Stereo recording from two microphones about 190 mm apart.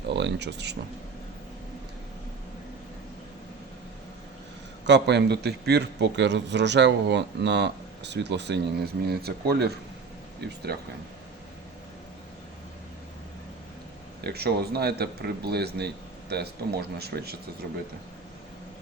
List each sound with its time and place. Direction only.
0.1 s a man's voice: 65° right (ahead or behind)
4.9 s a man's voice: 65° right (ahead or behind)
14.3 s a man's voice: 55° right (ahead or behind)